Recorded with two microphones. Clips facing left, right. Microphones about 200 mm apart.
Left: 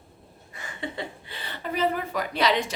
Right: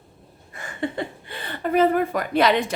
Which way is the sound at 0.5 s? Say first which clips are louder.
Right 7 dB; 50° right (ahead or behind).